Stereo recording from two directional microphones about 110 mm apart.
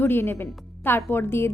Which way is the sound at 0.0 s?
20° left (ahead or behind).